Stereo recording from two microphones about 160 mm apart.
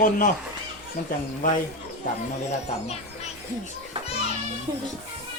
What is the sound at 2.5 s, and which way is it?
Speech, 40° left (ahead or behind).